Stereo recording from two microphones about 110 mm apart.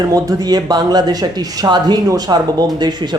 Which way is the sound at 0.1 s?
35° right (ahead or behind).